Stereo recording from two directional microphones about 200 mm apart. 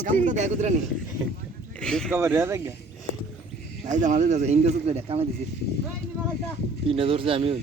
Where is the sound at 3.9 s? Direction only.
40° right (ahead or behind).